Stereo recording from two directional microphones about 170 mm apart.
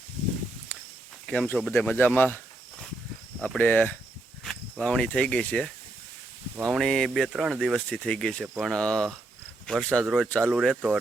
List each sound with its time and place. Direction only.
0.7 s a sound: 10° left (ahead or behind)
1.3 s speech: 5° left (ahead or behind)
3.4 s speech: 10° left (ahead or behind)